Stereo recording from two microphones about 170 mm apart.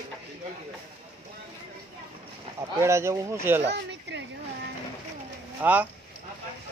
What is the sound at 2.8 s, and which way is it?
Speech, 15° right (ahead or behind).